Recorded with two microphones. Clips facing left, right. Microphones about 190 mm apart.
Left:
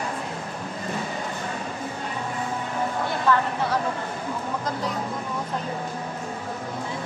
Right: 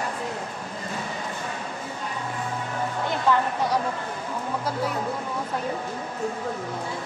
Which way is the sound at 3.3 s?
15° right (ahead or behind).